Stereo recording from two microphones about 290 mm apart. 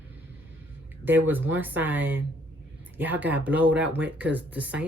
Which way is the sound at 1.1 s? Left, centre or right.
Centre.